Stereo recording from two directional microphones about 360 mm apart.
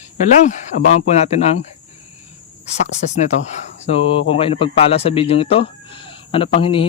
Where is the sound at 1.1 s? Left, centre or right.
Centre.